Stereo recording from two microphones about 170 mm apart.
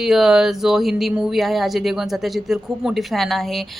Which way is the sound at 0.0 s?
Centre (ahead or behind).